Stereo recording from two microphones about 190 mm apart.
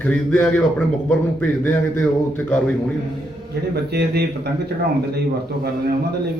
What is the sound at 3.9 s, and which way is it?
Speech, 60° right (ahead or behind).